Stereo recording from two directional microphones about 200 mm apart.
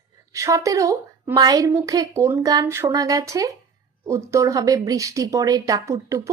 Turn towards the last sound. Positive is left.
turn(degrees=-15)  # may be behind; listen again after turning